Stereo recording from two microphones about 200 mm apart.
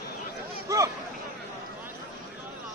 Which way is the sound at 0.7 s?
15° right (ahead or behind).